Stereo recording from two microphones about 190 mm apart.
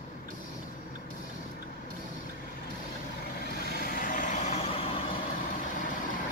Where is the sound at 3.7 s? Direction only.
50° left (ahead or behind); by 5.0 s 30° left (ahead or behind).